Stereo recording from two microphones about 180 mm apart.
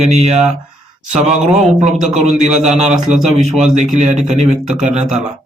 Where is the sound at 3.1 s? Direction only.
5° right (ahead or behind).